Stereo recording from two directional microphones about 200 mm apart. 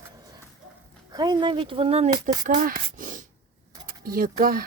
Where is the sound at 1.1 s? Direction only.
20° right (ahead or behind).